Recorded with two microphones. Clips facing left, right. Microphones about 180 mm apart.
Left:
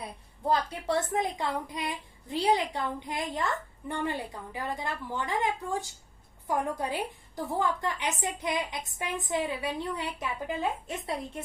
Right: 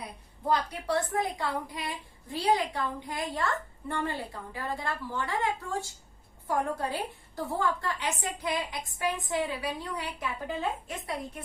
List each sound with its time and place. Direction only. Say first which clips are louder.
0.4 s a woman's voice: left 1 dB; 20° left (ahead or behind)